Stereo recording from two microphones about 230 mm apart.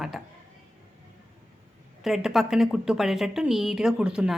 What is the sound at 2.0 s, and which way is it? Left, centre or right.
A woman's voice, centre.